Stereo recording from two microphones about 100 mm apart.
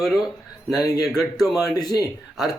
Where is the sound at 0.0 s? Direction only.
Centre (ahead or behind).